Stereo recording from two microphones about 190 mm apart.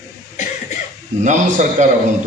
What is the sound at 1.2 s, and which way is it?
Speech, 40° right (ahead or behind).